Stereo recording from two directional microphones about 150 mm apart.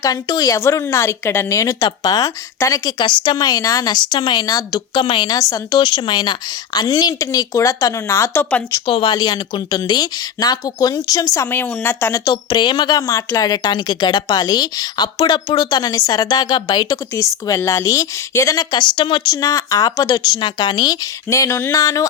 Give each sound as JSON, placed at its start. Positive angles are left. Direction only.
{"t": 0.0, "sound": "speech", "side_deg": 25}
{"t": 8.9, "sound": "speech", "side_deg": 30}
{"t": 11.3, "sound": "speech", "side_deg": 15}